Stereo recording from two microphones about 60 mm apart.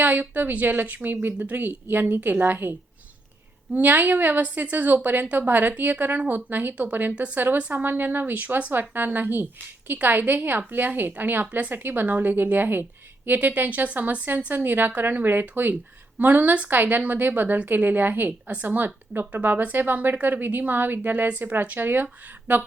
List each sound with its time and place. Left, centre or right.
0.0 s a woman's voice: right
3.8 s a woman's voice: right